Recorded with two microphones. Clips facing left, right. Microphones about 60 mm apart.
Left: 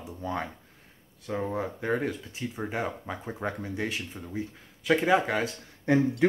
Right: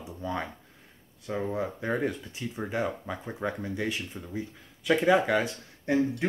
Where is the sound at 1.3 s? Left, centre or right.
Centre.